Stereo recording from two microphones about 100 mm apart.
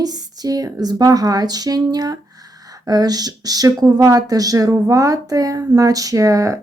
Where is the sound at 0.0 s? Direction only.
40° right (ahead or behind).